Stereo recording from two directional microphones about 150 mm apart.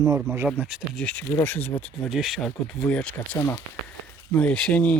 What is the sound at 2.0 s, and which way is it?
Speech, centre (ahead or behind).